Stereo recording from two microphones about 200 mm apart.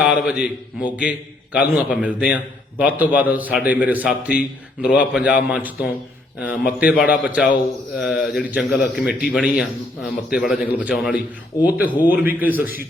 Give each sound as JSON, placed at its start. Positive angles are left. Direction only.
{"t": 0.0, "sound": "a man's voice", "side_deg": -5}